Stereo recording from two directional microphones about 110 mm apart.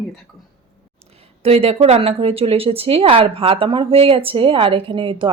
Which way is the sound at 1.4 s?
65° right (ahead or behind).